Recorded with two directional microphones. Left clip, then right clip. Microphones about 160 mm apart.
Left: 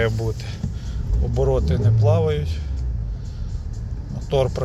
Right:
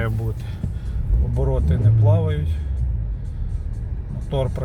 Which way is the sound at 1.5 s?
Centre (ahead or behind).